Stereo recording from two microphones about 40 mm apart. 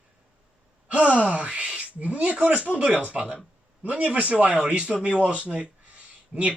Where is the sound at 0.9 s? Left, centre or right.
Right.